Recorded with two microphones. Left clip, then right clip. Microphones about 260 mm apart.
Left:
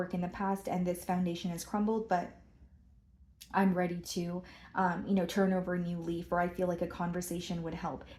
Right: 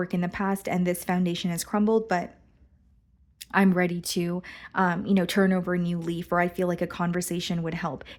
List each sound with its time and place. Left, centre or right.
0.0 s speech: right
3.3 s speech: right